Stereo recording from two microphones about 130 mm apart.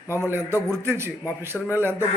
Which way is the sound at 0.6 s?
20° right (ahead or behind).